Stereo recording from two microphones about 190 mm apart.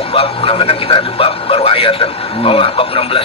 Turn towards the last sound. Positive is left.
turn(degrees=30)  # may be behind; listen again after turning